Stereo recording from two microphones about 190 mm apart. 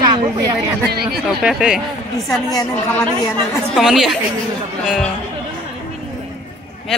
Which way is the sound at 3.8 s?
Centre (ahead or behind).